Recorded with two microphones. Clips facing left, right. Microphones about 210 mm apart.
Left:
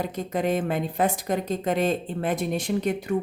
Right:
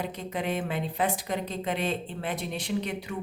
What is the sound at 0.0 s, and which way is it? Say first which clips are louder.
A woman's voice: left 6 dB; 45° left (ahead or behind).